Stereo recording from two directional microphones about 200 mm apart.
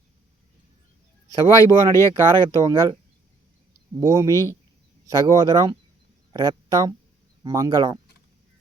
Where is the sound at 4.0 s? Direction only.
15° right (ahead or behind).